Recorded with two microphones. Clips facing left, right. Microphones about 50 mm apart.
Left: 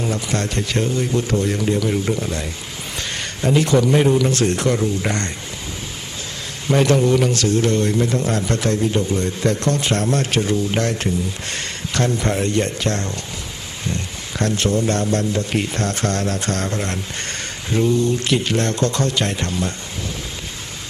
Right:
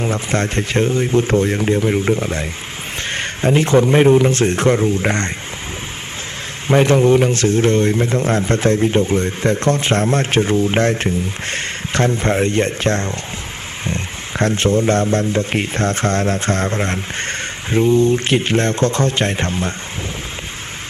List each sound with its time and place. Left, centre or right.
0.0 s a man's voice: right
6.7 s a man's voice: right